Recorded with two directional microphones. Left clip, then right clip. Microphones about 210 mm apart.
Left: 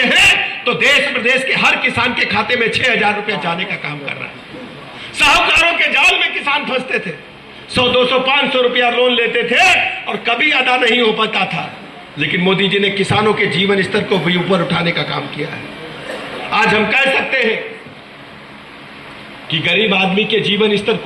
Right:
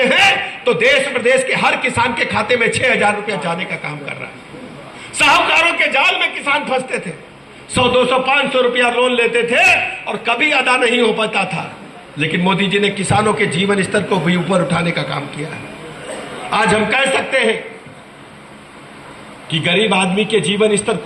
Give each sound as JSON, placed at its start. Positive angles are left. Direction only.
{"t": 0.6, "sound": "a man's voice", "side_deg": -55}
{"t": 16.5, "sound": "a man's voice", "side_deg": -55}
{"t": 19.5, "sound": "a man's voice", "side_deg": -55}